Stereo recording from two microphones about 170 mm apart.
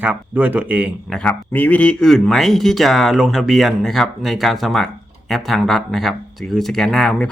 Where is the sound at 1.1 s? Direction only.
5° left (ahead or behind).